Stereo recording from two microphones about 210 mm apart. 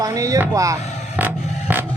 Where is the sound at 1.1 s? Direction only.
10° right (ahead or behind).